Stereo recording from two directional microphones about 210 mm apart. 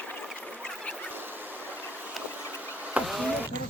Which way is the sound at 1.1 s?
10° right (ahead or behind).